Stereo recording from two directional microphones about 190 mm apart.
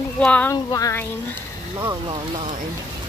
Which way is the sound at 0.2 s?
5° left (ahead or behind).